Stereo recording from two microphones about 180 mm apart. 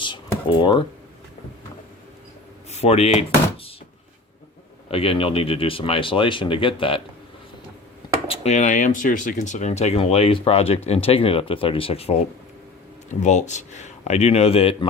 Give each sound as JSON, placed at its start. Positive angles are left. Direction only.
{"t": 0.0, "sound": "a sound", "side_deg": 25}
{"t": 2.6, "sound": "door", "side_deg": 35}
{"t": 4.9, "sound": "speech", "side_deg": 30}
{"t": 8.3, "sound": "speech", "side_deg": 40}
{"t": 13.1, "sound": "speech", "side_deg": 40}